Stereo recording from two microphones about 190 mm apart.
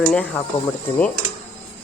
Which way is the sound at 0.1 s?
5° left (ahead or behind).